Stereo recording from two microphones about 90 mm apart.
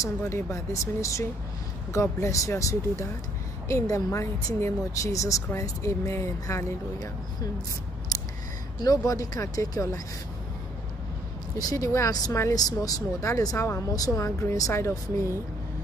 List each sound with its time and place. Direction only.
0.0 s speech: 30° left (ahead or behind)
8.8 s speech: 40° left (ahead or behind)
11.5 s speech: 35° left (ahead or behind)
12.5 s speech: 45° left (ahead or behind)